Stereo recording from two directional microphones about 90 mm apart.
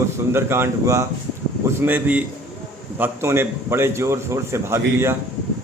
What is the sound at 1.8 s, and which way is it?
Speech, 20° right (ahead or behind).